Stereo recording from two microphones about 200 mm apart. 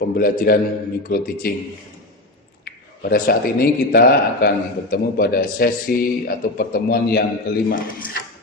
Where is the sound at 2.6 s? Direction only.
50° left (ahead or behind).